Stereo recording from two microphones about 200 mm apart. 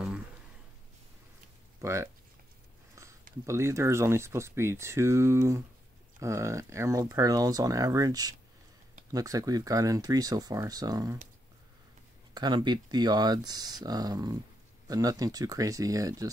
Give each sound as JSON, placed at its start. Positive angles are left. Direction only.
{"t": 1.8, "sound": "speech", "side_deg": -15}
{"t": 3.0, "sound": "a sound", "side_deg": -15}
{"t": 3.4, "sound": "speech", "side_deg": -15}
{"t": 12.4, "sound": "speech", "side_deg": -20}